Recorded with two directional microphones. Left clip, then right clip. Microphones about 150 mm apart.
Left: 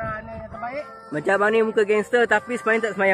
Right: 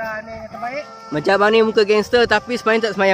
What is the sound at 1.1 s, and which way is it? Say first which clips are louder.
Speech: right 5 dB; 45° right (ahead or behind).